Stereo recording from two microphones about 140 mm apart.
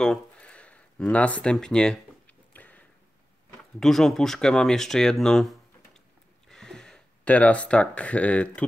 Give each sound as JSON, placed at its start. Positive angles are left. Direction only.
{"t": 0.0, "sound": "speech", "side_deg": 5}
{"t": 2.5, "sound": "a sound", "side_deg": 10}
{"t": 3.8, "sound": "speech", "side_deg": 5}